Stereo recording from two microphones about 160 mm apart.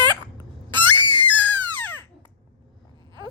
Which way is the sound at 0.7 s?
10° left (ahead or behind).